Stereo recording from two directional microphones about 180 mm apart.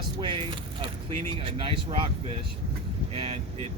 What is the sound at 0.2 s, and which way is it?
Speech, 25° right (ahead or behind).